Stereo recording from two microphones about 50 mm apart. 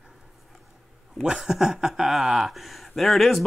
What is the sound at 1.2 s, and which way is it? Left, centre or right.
A man's voice, centre.